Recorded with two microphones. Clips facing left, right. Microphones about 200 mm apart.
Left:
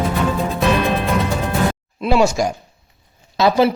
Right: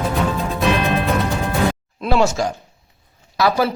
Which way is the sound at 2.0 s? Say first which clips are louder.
Left 2 dB; 15° left (ahead or behind).